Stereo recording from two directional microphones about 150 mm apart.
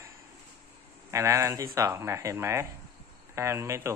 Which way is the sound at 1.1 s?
20° right (ahead or behind).